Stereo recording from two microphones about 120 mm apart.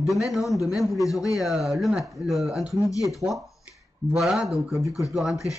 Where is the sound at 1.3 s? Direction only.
Centre (ahead or behind).